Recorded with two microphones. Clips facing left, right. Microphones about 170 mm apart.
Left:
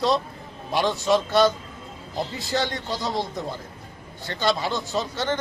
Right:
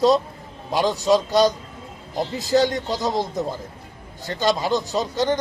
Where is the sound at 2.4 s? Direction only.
40° right (ahead or behind).